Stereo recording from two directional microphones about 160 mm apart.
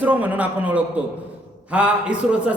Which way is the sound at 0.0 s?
10° right (ahead or behind).